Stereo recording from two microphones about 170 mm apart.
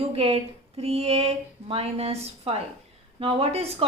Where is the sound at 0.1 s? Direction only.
35° right (ahead or behind).